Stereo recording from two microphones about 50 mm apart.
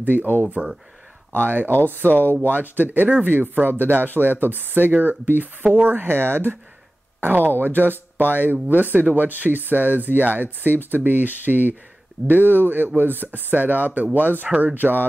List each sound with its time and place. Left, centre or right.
0.0 s speech: right
14.5 s speech: right
14.8 s speech: right